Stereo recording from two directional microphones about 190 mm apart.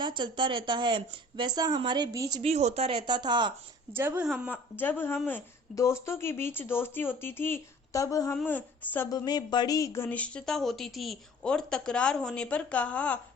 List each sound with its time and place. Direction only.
0.0 s speech: 25° right (ahead or behind)
2.4 s speech: 35° right (ahead or behind)
3.9 s speech: 10° right (ahead or behind)
4.4 s speech: 10° left (ahead or behind)
9.0 s speech: 20° left (ahead or behind)